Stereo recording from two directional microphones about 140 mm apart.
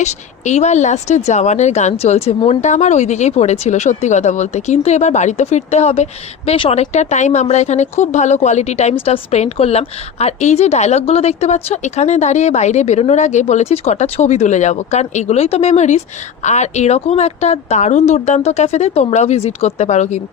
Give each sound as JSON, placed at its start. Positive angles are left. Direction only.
{"t": 0.0, "sound": "speech", "side_deg": 55}